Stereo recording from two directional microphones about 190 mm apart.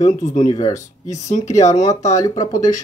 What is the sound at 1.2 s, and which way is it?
Speech, 40° left (ahead or behind).